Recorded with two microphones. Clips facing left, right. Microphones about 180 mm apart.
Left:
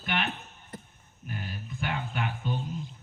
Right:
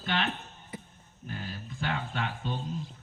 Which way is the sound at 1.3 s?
30° right (ahead or behind).